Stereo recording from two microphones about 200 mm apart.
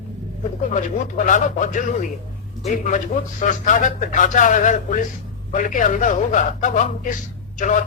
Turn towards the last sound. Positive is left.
turn(degrees=40)  # may be behind; listen again after turning